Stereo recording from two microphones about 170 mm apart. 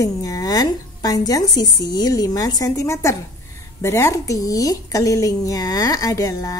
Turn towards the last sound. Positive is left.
turn(degrees=20)  # may be behind; listen again after turning